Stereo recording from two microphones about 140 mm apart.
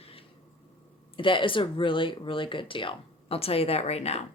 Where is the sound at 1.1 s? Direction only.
35° left (ahead or behind).